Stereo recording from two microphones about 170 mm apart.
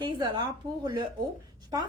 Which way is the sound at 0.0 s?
25° right (ahead or behind).